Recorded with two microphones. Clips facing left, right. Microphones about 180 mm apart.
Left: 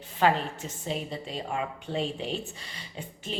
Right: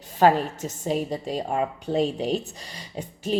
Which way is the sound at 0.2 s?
40° right (ahead or behind).